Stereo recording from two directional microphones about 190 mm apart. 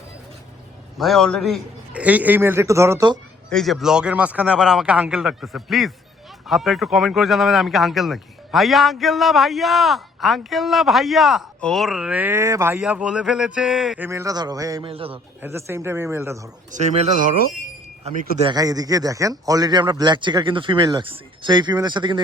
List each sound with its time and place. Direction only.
0.9 s a man's voice: centre (ahead or behind); by 3.2 s 15° right (ahead or behind)
3.5 s speech: centre (ahead or behind); by 14.8 s 20° right (ahead or behind)
14.8 s speech: 30° right (ahead or behind)
15.4 s a man's voice: 15° right (ahead or behind)
16.7 s speech: 35° right (ahead or behind)
18.0 s speech: 25° right (ahead or behind)